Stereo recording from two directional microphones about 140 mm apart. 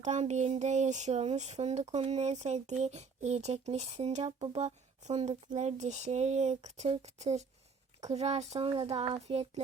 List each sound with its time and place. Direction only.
0.0 s speech: 55° right (ahead or behind)
4.6 s speech: 55° right (ahead or behind)